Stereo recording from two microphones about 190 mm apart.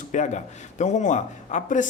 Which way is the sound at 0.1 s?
40° left (ahead or behind).